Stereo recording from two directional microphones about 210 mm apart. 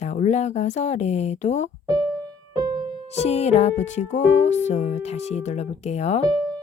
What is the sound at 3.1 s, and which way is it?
A woman's voice, 30° left (ahead or behind).